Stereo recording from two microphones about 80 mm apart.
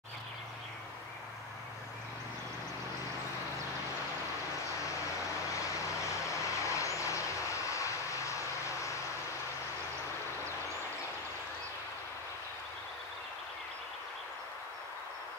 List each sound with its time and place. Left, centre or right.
6.3 s vehicle: left